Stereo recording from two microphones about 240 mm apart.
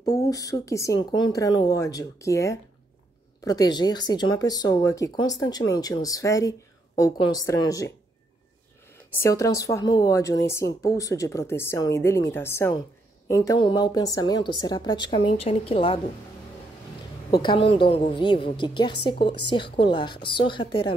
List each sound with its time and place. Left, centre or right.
0.0 s speech: centre
9.2 s a woman's voice: centre
17.3 s a woman's voice: centre